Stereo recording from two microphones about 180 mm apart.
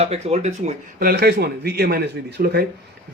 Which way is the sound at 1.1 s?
60° right (ahead or behind).